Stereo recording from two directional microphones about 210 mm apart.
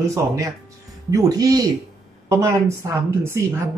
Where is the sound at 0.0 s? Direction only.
15° right (ahead or behind).